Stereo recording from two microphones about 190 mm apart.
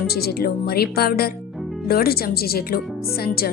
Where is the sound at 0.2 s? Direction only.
55° left (ahead or behind).